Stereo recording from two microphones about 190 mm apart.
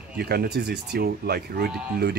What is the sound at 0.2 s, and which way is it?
Speech, 55° right (ahead or behind).